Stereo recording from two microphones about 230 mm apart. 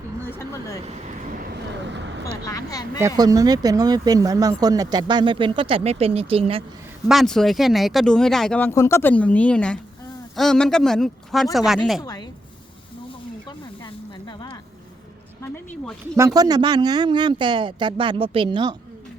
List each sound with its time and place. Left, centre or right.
0.3 s speech: centre
0.9 s vehicle: right
2.2 s speech: centre
3.2 s speech: centre
7.1 s speech: centre
13.8 s a sound: left
15.4 s a sound: centre
16.1 s speech: centre